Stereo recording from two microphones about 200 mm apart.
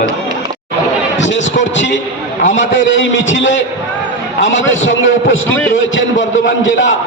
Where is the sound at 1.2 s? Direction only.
65° left (ahead or behind).